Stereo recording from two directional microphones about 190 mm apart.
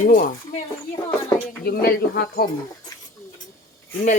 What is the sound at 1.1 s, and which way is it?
Cricket, 10° left (ahead or behind).